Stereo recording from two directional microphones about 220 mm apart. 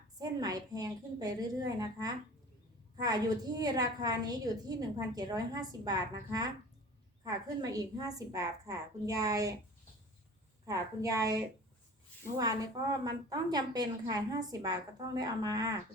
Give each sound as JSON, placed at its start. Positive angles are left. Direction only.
{"t": 0.2, "sound": "a woman's voice", "side_deg": -15}
{"t": 10.7, "sound": "a woman's voice", "side_deg": -15}